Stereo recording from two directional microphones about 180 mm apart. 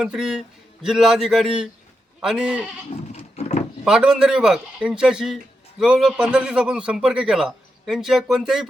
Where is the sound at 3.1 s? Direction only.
40° left (ahead or behind).